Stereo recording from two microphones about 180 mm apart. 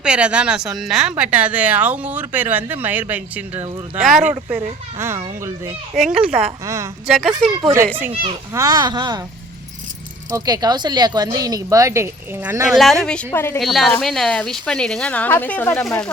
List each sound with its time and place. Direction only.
0.0 s speech: 5° right (ahead or behind)
8.5 s speech: 20° right (ahead or behind)
10.3 s speech: 20° right (ahead or behind)
12.7 s speech: centre (ahead or behind)
13.6 s speech: centre (ahead or behind)